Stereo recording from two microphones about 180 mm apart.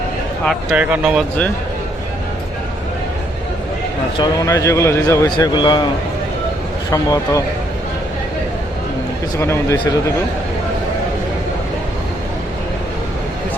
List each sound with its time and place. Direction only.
0.4 s speech: 5° right (ahead or behind)
4.2 s a man's voice: 20° left (ahead or behind)
6.9 s speech: 20° left (ahead or behind)
9.4 s a man's voice: 15° left (ahead or behind)